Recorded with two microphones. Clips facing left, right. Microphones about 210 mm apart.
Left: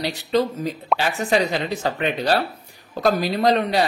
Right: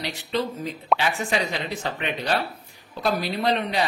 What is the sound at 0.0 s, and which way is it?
Speech, 45° left (ahead or behind).